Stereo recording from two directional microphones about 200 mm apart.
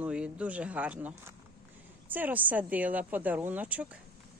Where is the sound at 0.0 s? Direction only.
5° right (ahead or behind).